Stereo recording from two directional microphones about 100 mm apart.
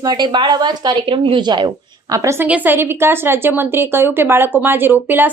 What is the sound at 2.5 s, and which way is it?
A woman's voice, 15° right (ahead or behind).